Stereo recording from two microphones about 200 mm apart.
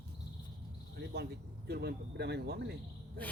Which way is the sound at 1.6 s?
55° right (ahead or behind).